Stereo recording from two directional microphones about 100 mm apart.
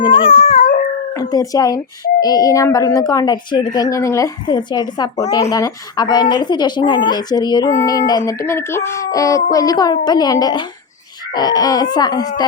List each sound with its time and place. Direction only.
0.0 s dog: 70° left (ahead or behind)
1.1 s speech: 35° left (ahead or behind)
4.4 s a woman's voice: 45° left (ahead or behind)
8.4 s a woman's voice: 25° left (ahead or behind); by 12.5 s 45° left (ahead or behind)